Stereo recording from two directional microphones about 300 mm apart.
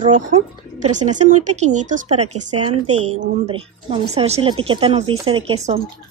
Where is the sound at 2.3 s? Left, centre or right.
Right.